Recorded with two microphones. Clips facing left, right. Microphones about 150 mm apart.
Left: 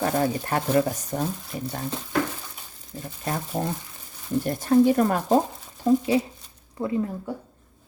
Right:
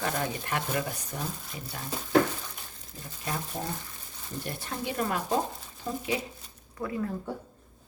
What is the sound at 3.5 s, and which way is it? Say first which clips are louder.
Speech: left 8 dB; 60° left (ahead or behind).